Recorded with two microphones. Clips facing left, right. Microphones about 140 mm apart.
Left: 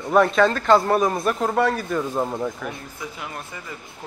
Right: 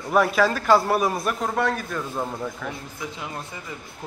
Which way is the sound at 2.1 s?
15° left (ahead or behind).